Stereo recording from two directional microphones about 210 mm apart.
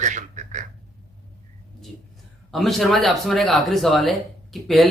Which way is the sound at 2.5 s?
Centre (ahead or behind).